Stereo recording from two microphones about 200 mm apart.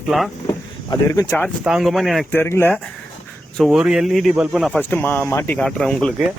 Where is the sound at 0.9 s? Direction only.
15° left (ahead or behind).